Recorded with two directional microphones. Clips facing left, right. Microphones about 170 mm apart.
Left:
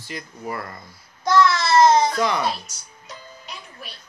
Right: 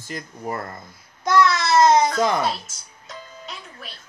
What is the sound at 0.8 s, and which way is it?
Babbling, 20° right (ahead or behind).